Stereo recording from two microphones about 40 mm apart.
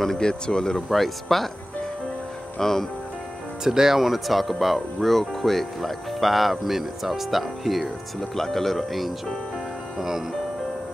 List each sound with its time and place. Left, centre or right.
0.0 s speech: centre
0.3 s speech: left
0.8 s speech: centre
2.6 s speech: centre
3.6 s speech: centre
9.9 s speech: centre